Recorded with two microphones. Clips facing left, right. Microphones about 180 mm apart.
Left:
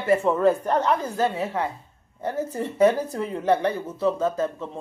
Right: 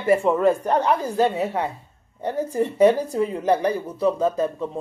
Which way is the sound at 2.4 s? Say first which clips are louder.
Right 3 dB; 10° right (ahead or behind).